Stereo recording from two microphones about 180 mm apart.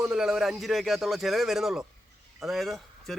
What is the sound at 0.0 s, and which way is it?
A man's voice, 5° right (ahead or behind).